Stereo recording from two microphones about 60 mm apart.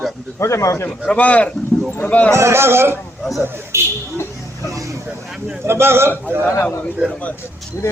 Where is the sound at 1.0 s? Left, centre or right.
Left.